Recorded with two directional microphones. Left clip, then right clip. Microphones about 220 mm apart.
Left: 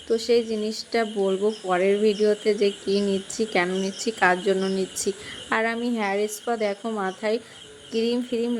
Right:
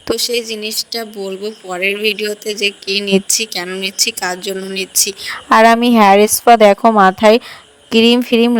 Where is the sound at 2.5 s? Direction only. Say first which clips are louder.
Right 5 dB; 50° right (ahead or behind).